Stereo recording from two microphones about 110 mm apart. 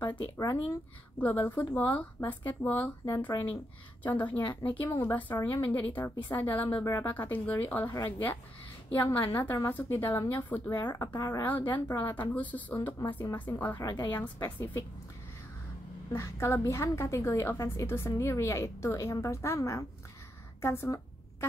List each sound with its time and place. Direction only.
1.2 s speech: 15° left (ahead or behind)
4.0 s a woman's voice: 15° left (ahead or behind)
5.1 s a woman's voice: 15° left (ahead or behind)
11.1 s a woman's voice: 30° left (ahead or behind)
11.4 s a woman's voice: 15° left (ahead or behind)
16.1 s a woman's voice: 25° left (ahead or behind)
20.6 s a sound: 20° left (ahead or behind)